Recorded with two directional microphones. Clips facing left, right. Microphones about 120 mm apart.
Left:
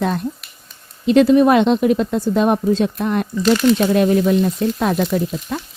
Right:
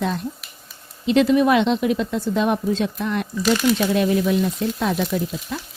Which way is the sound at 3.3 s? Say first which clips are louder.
Left 4 dB; 5° right (ahead or behind).